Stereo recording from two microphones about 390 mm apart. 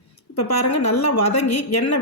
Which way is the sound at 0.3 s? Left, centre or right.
Left.